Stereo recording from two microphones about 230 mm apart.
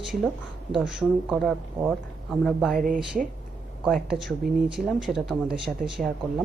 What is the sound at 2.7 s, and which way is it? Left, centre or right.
Speech, right.